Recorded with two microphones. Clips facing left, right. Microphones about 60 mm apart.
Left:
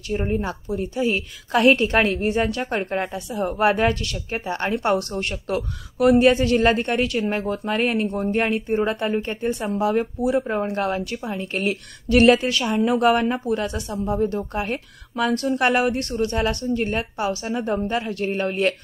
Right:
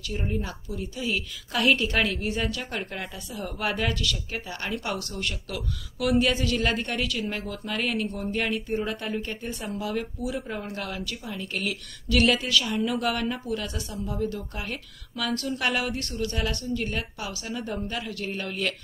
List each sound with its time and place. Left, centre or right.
0.1 s speech: left
12.6 s speech: left